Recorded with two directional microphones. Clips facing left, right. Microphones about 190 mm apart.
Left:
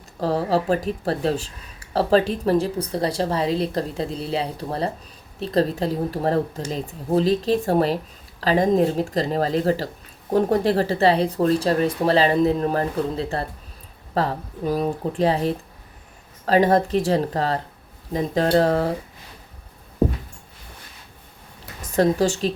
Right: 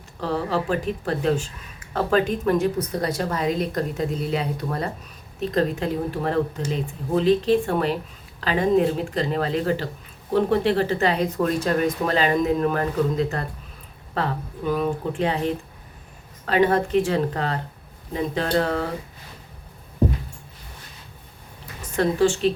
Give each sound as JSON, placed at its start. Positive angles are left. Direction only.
{"t": 0.2, "sound": "speech", "side_deg": 40}
{"t": 21.9, "sound": "speech", "side_deg": 40}